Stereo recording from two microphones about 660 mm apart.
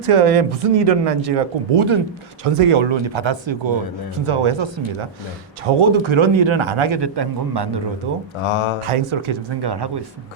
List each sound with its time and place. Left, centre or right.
0.0 s a man's voice: right
8.4 s speech: left
8.8 s a man's voice: right